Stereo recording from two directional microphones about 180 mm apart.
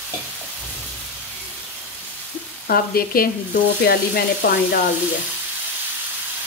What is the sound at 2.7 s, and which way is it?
A woman's voice, 55° left (ahead or behind).